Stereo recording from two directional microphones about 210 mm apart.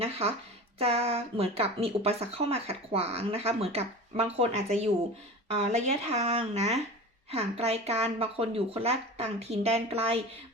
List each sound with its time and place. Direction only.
0.8 s speech: 30° right (ahead or behind)